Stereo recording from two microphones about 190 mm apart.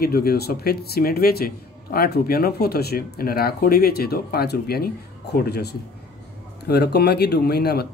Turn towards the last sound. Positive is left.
turn(degrees=55)  # may be behind; listen again after turning